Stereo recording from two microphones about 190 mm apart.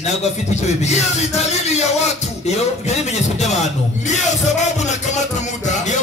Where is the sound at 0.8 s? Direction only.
35° left (ahead or behind).